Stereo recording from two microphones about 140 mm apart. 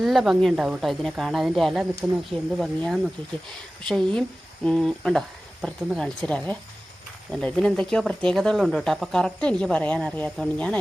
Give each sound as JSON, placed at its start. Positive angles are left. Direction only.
{"t": 0.0, "sound": "speech", "side_deg": 0}